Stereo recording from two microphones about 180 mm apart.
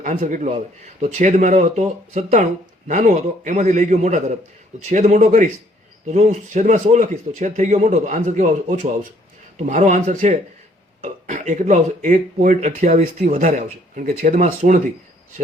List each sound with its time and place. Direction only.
0.0 s speech: 45° right (ahead or behind)